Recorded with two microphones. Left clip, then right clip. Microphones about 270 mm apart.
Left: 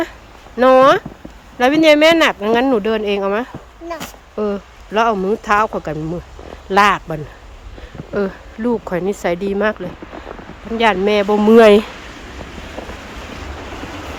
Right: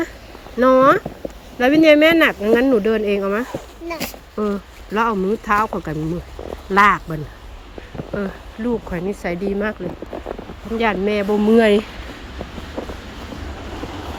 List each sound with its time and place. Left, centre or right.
0.6 s speech: centre
8.1 s speech: left
10.8 s speech: centre
12.8 s boat: right